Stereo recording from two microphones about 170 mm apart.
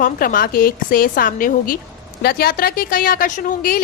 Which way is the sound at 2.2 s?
65° left (ahead or behind).